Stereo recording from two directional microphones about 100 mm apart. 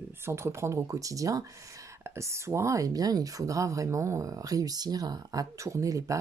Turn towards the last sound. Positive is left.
turn(degrees=-30)  # may be behind; listen again after turning